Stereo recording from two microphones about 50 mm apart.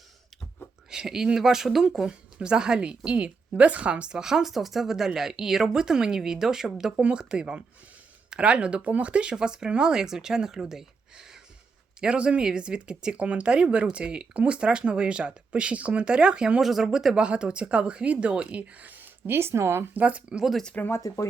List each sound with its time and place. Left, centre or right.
0.9 s speech: centre
11.9 s speech: centre
16.6 s speech: centre
17.2 s speech: right
19.3 s speech: right
19.9 s speech: right
20.9 s speech: left